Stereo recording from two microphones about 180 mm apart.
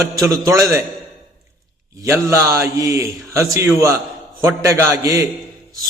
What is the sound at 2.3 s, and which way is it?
A man's voice, 15° right (ahead or behind).